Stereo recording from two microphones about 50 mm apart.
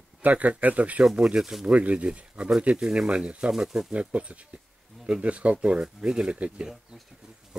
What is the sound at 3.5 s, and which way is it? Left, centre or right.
Speech, centre.